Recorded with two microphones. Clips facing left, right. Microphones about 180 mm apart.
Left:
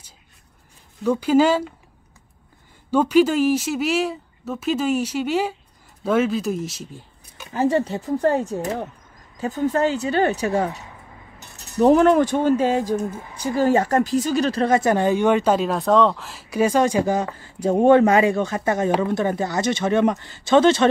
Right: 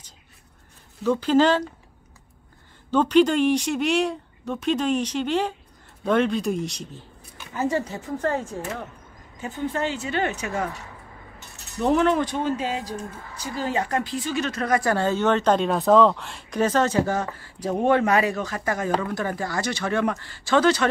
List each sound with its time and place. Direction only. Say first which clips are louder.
1.0 s speech: left 2 dB; 10° left (ahead or behind)
2.9 s speech: left 1 dB; 10° left (ahead or behind)
7.5 s speech: left 5 dB; 30° left (ahead or behind)